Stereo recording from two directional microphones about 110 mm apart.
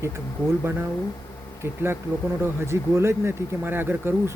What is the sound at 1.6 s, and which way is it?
Speech, 20° right (ahead or behind).